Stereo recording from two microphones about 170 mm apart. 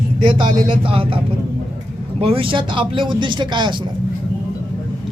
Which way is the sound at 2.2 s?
30° right (ahead or behind).